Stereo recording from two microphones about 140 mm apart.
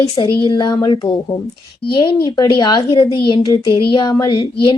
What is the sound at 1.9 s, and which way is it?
A woman's voice, 35° left (ahead or behind).